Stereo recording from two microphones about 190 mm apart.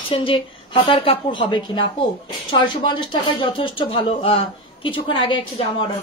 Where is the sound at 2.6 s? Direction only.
25° left (ahead or behind).